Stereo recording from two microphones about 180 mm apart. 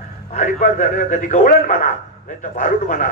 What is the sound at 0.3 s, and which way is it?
A man's voice, 45° left (ahead or behind).